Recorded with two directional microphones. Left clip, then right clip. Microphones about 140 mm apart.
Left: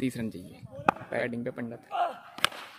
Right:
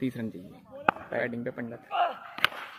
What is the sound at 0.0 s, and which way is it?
Speech, 20° left (ahead or behind).